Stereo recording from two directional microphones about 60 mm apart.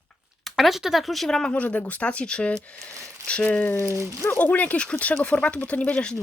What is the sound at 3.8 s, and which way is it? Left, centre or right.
Speech, right.